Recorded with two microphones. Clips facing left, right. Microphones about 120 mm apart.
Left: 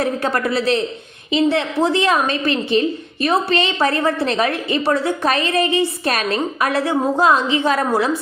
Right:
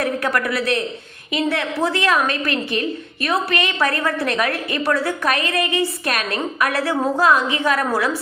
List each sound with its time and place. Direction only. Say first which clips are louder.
0.0 s a woman's voice: left 1 dB; 25° left (ahead or behind)